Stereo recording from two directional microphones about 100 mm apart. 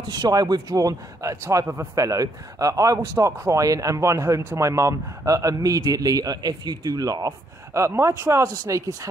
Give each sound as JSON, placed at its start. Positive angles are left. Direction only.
{"t": 0.1, "sound": "a man's voice", "side_deg": -40}